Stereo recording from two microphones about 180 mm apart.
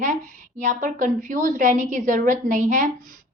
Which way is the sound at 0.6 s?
45° right (ahead or behind).